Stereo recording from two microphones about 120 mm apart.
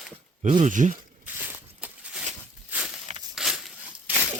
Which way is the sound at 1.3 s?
15° right (ahead or behind).